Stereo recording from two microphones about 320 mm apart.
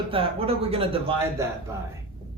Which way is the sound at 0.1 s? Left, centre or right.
Centre.